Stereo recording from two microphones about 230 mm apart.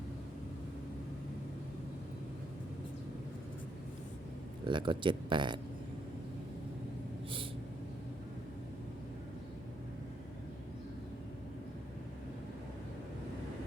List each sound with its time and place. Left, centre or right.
4.6 s speech: right